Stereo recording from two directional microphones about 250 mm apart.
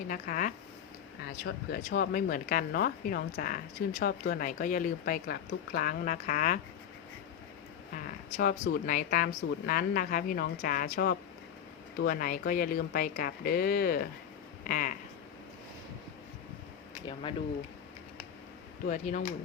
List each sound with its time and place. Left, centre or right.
0.1 s speech: left
7.9 s speech: left
14.6 s a sound: left
18.9 s speech: left